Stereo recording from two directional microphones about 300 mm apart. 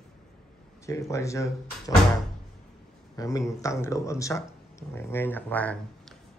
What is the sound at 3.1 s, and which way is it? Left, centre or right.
Speech, centre.